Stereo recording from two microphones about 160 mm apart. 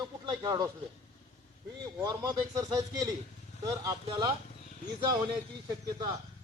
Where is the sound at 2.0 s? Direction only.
25° right (ahead or behind).